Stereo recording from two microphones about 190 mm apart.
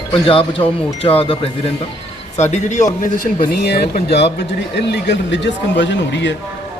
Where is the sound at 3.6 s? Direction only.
55° left (ahead or behind).